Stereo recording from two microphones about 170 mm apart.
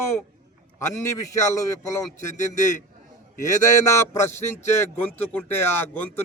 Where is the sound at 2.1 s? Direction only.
45° left (ahead or behind).